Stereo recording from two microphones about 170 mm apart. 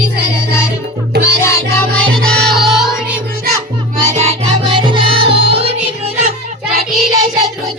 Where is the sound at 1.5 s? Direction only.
15° left (ahead or behind); by 3.2 s centre (ahead or behind).